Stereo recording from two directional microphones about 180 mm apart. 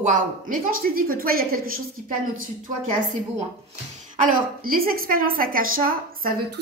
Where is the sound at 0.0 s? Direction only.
45° right (ahead or behind).